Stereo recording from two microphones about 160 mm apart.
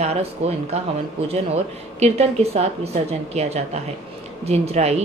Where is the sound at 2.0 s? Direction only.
40° right (ahead or behind).